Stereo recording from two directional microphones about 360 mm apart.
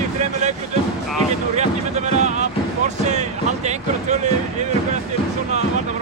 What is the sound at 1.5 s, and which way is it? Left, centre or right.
Music, centre.